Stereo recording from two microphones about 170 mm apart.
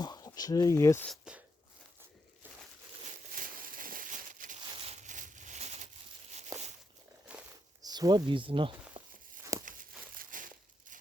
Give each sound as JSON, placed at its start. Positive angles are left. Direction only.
{"t": 0.0, "sound": "speech", "side_deg": 25}
{"t": 1.0, "sound": "speech", "side_deg": 0}
{"t": 3.3, "sound": "crumpling", "side_deg": -55}
{"t": 4.8, "sound": "a sound", "side_deg": -40}
{"t": 6.5, "sound": "walk", "side_deg": -20}
{"t": 7.3, "sound": "a sound", "side_deg": -5}
{"t": 7.8, "sound": "speech", "side_deg": -20}
{"t": 9.4, "sound": "walk", "side_deg": -20}
{"t": 9.6, "sound": "crumpling", "side_deg": -50}